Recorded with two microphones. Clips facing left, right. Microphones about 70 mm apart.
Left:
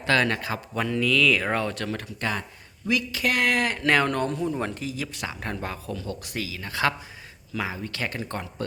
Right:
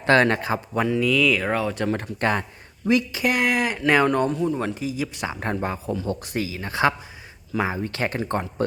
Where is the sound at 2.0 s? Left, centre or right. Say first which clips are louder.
Right 6 dB; right.